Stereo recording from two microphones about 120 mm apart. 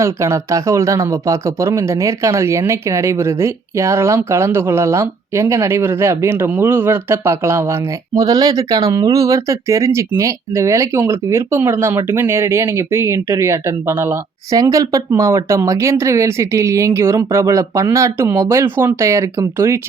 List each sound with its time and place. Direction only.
0.0 s speech: 25° right (ahead or behind)